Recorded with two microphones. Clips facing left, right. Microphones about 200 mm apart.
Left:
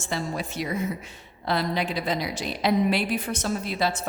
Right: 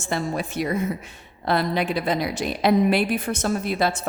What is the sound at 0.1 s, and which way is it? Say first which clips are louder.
A woman's voice: right 4 dB; 55° right (ahead or behind).